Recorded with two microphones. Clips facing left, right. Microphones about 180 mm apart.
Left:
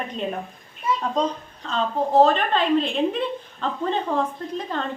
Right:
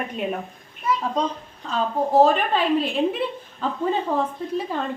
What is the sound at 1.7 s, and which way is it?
A woman's voice, 10° right (ahead or behind).